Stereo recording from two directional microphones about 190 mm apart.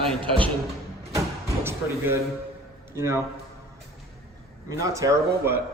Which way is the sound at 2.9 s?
15° right (ahead or behind).